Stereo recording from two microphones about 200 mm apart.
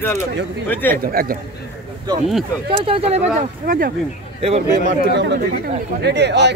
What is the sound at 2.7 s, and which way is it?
Speech, 25° right (ahead or behind).